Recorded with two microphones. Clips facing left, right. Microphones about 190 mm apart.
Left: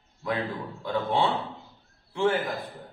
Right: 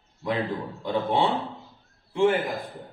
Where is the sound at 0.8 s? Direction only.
15° right (ahead or behind).